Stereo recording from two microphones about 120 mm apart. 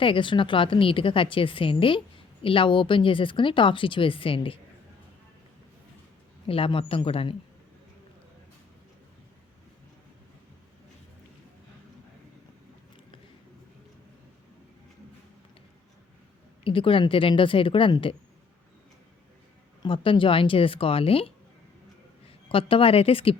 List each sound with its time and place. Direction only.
0.0 s a woman's voice: 45° left (ahead or behind)
6.5 s a woman's voice: 50° left (ahead or behind)
16.6 s a woman's voice: 45° left (ahead or behind)
19.8 s a woman's voice: 45° left (ahead or behind)
22.4 s a woman's voice: 50° left (ahead or behind)